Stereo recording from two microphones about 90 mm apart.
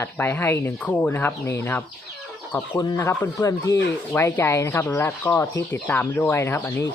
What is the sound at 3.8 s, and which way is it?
Speech, 20° left (ahead or behind).